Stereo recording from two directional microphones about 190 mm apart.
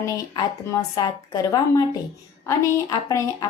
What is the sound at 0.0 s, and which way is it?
A woman's voice, 15° left (ahead or behind).